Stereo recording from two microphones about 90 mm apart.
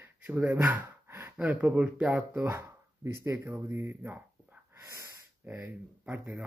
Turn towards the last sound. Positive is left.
turn(degrees=-20)  # may be behind; listen again after turning